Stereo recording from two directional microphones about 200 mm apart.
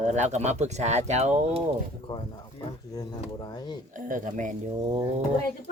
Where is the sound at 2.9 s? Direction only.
20° left (ahead or behind).